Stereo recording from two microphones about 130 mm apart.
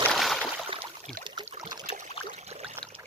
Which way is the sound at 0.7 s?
45° right (ahead or behind).